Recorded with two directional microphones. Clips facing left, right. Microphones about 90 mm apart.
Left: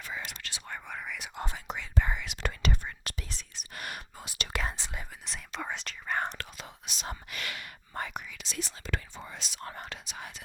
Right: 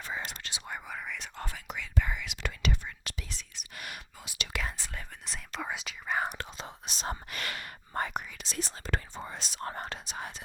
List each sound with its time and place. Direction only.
0.0 s whispering: 30° right (ahead or behind)
0.7 s whispering: centre (ahead or behind)
1.4 s whispering: 25° left (ahead or behind); by 4.7 s 40° left (ahead or behind)
4.8 s whispering: 15° left (ahead or behind)
5.2 s whispering: centre (ahead or behind)
6.4 s whispering: 30° right (ahead or behind)